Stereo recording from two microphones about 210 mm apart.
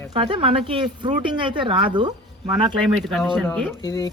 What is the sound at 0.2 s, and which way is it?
Speech, 25° right (ahead or behind).